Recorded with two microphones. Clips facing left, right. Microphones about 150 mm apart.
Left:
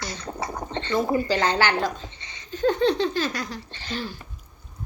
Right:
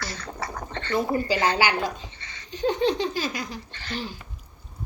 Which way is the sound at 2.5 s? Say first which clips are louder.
Left 3 dB; 45° left (ahead or behind).